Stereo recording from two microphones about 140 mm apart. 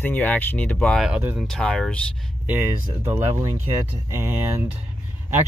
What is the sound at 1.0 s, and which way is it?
Speech, 5° right (ahead or behind).